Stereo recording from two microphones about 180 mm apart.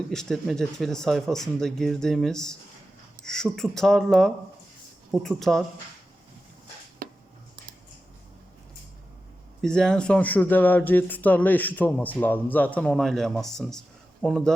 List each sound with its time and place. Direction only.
0.1 s speech: 5° left (ahead or behind)
7.0 s a sound: 55° right (ahead or behind)
9.6 s speech: 5° left (ahead or behind)